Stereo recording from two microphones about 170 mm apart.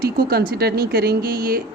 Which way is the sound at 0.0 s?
65° right (ahead or behind).